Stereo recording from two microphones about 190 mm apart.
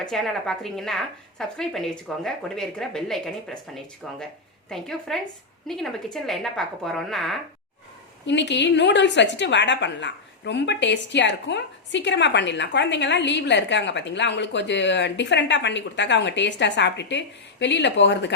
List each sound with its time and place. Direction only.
0.0 s a woman's voice: centre (ahead or behind)
4.7 s a woman's voice: centre (ahead or behind)
8.3 s a woman's voice: 70° left (ahead or behind)